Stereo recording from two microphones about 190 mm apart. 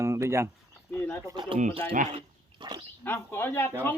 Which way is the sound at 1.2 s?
25° right (ahead or behind).